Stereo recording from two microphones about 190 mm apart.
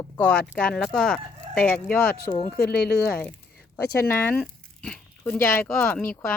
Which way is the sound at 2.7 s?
55° left (ahead or behind).